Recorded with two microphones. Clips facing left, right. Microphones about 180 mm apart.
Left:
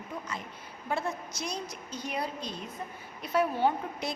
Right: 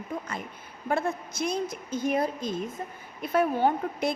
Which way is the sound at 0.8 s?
50° right (ahead or behind).